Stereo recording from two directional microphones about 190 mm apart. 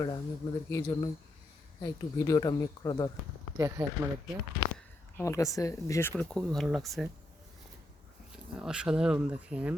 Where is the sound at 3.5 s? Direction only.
15° right (ahead or behind).